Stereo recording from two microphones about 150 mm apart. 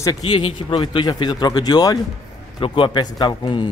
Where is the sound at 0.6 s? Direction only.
35° left (ahead or behind).